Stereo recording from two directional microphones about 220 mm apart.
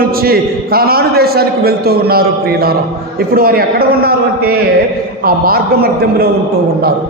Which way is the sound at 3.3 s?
40° right (ahead or behind).